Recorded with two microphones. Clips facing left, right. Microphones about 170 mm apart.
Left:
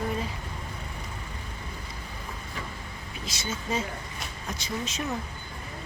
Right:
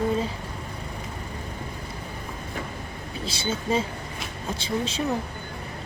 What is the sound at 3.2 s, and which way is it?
Speech, 30° right (ahead or behind).